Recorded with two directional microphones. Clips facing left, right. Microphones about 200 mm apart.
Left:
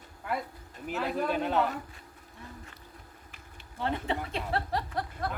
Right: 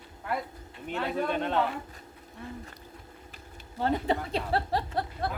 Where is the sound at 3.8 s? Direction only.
40° right (ahead or behind).